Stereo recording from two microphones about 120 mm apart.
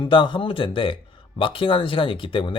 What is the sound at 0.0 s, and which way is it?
Speech, 45° left (ahead or behind).